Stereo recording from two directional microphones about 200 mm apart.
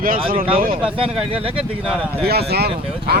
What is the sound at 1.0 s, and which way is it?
Speech, 30° right (ahead or behind).